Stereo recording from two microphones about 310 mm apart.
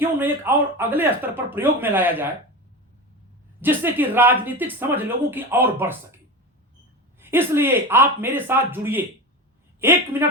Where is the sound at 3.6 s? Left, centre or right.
Centre.